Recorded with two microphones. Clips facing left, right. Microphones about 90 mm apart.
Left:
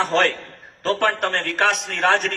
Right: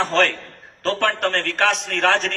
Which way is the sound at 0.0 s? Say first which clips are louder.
Even; 15° left (ahead or behind).